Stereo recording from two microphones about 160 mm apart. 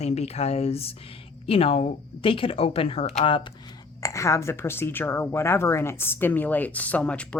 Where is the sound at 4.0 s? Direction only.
20° left (ahead or behind).